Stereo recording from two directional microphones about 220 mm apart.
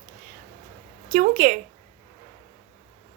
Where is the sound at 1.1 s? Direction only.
35° right (ahead or behind).